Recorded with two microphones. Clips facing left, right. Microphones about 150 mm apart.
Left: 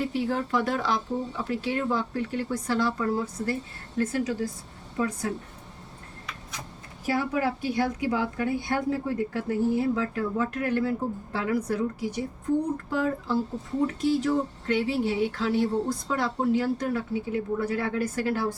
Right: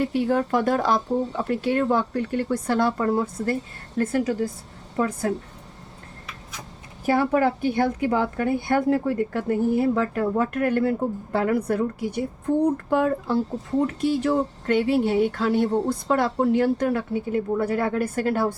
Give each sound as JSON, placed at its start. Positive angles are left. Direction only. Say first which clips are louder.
{"t": 0.1, "sound": "a woman's voice", "louder": "right 5 dB", "side_deg": -55}
{"t": 7.0, "sound": "a woman's voice", "louder": "right 6 dB", "side_deg": -55}